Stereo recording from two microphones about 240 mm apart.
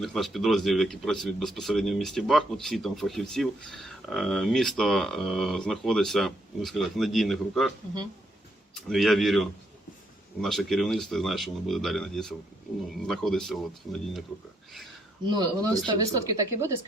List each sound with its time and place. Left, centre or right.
0.0 s speech: centre
8.9 s speech: centre
15.3 s speech: centre